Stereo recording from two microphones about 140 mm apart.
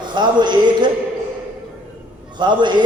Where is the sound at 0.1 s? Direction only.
35° right (ahead or behind).